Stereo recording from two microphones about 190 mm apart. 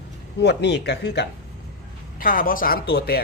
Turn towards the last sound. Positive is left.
turn(degrees=55)  # may be behind; listen again after turning